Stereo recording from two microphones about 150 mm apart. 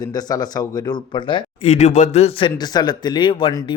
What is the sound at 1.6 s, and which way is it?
Speech, 50° left (ahead or behind).